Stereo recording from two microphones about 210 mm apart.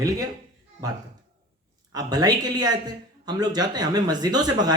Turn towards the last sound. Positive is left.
turn(degrees=-20)  # may be behind; listen again after turning